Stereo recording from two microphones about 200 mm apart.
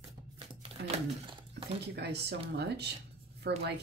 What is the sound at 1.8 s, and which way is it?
A woman's voice, 55° right (ahead or behind).